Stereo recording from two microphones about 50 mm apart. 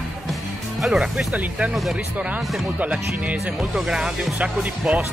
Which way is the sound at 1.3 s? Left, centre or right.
Right.